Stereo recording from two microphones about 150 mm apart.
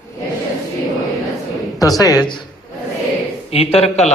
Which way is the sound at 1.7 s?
25° left (ahead or behind).